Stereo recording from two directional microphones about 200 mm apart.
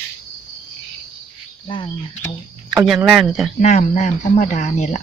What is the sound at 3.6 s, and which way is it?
Speech, 35° left (ahead or behind).